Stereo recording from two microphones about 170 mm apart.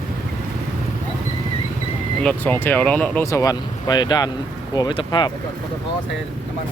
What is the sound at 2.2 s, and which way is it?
Speech, 10° left (ahead or behind).